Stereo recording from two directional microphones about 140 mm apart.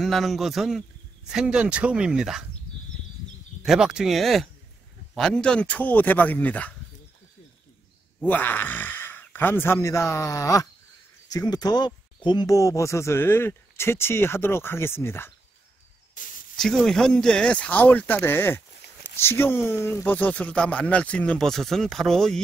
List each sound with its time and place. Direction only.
0.0 s speech: centre (ahead or behind)
3.6 s speech: 5° right (ahead or behind)
8.3 s speech: 15° left (ahead or behind)
16.2 s snake: 70° left (ahead or behind)
16.5 s speech: 5° left (ahead or behind)